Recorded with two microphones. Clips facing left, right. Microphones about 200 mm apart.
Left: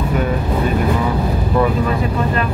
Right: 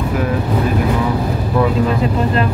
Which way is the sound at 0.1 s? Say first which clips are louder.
Right 1 dB; centre (ahead or behind).